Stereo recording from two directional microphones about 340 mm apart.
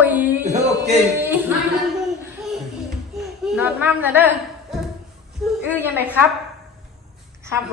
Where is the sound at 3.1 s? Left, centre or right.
Centre.